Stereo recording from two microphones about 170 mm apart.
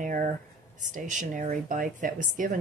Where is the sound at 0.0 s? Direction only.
50° right (ahead or behind).